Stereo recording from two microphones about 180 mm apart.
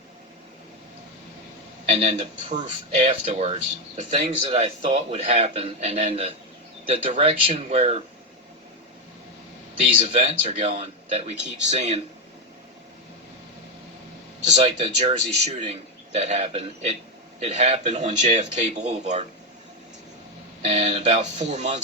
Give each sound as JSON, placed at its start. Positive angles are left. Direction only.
{"t": 1.9, "sound": "a man's voice", "side_deg": -35}
{"t": 9.8, "sound": "a man's voice", "side_deg": -35}
{"t": 14.4, "sound": "a man's voice", "side_deg": -40}
{"t": 20.7, "sound": "a man's voice", "side_deg": -40}